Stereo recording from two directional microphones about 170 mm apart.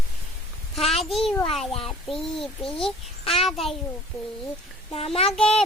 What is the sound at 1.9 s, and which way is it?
Speech, centre (ahead or behind).